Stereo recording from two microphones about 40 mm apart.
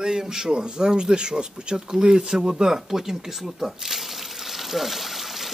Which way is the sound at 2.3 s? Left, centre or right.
Centre.